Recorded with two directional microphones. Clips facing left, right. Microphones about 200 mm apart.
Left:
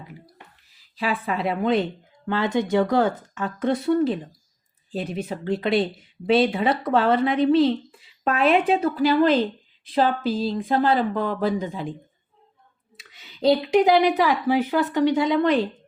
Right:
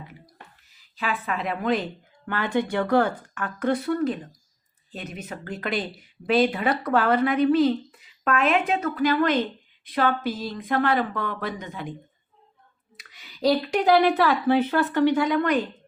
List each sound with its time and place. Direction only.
0.8 s a woman's voice: 35° left (ahead or behind)
13.0 s speech: 25° left (ahead or behind)